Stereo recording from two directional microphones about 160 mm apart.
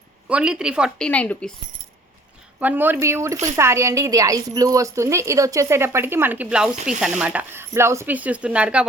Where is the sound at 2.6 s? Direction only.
10° right (ahead or behind).